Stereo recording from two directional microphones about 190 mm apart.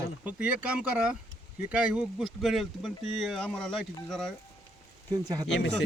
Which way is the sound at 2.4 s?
Centre (ahead or behind).